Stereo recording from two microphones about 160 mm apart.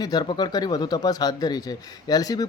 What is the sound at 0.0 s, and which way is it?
Speech, 25° left (ahead or behind).